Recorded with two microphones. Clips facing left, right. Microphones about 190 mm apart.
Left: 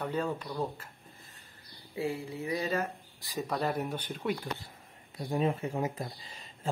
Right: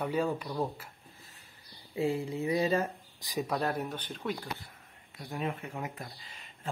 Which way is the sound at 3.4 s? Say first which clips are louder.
Even; centre (ahead or behind).